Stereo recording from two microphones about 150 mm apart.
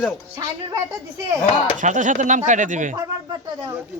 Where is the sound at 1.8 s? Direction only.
55° right (ahead or behind).